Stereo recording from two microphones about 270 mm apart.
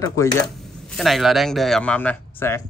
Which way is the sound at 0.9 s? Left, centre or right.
Centre.